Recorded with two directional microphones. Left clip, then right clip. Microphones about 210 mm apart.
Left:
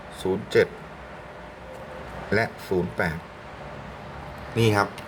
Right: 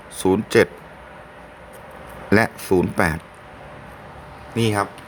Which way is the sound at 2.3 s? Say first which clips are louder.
Right 7 dB; 45° right (ahead or behind).